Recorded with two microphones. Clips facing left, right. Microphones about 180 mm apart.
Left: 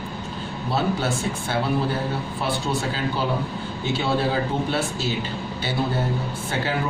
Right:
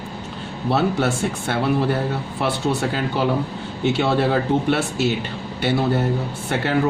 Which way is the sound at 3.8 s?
65° right (ahead or behind).